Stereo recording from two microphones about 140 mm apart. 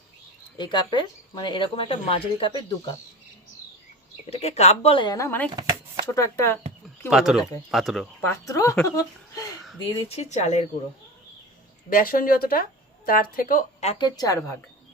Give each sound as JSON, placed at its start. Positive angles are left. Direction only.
{"t": 0.5, "sound": "speech", "side_deg": 30}
{"t": 4.3, "sound": "speech", "side_deg": 50}
{"t": 5.1, "sound": "a woman's voice", "side_deg": 20}
{"t": 7.1, "sound": "speech", "side_deg": -5}
{"t": 8.2, "sound": "a woman's voice", "side_deg": 25}
{"t": 9.8, "sound": "speech", "side_deg": 50}
{"t": 11.9, "sound": "speech", "side_deg": 90}
{"t": 14.0, "sound": "a woman's voice", "side_deg": 25}